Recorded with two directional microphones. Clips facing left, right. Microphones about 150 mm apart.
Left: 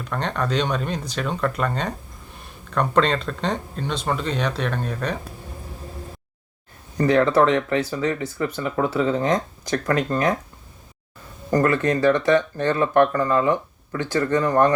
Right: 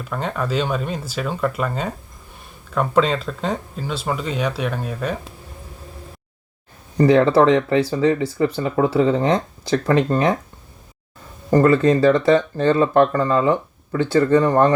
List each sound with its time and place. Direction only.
0.0 s speech: 5° right (ahead or behind)
6.9 s speech: 30° right (ahead or behind)
11.5 s speech: 25° right (ahead or behind)